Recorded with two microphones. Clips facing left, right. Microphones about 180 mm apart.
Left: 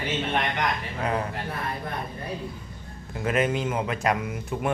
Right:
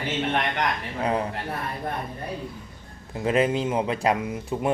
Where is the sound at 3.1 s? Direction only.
25° right (ahead or behind).